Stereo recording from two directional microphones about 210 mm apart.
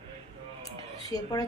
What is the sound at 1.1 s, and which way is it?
Speech, 15° left (ahead or behind).